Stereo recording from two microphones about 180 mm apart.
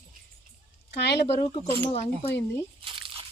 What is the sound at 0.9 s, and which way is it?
Speech, 70° left (ahead or behind).